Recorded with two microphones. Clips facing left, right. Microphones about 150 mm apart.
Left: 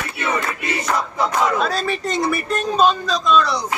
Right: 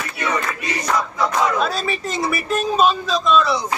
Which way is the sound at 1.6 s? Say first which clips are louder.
Left 1 dB; 5° right (ahead or behind).